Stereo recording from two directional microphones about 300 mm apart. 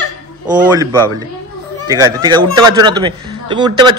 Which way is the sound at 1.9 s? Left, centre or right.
Centre.